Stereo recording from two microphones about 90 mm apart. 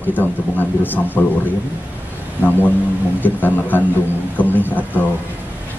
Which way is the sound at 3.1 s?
20° left (ahead or behind).